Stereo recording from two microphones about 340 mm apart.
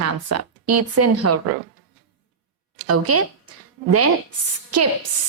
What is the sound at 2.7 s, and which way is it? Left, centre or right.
A woman's voice, right.